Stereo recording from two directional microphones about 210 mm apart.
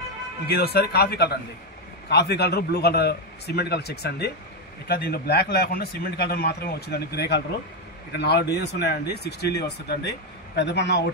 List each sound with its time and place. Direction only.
0.5 s speech: 50° left (ahead or behind)